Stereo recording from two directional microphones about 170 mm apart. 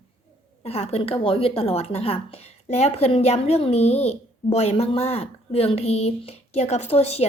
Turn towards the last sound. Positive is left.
turn(degrees=35)  # may be behind; listen again after turning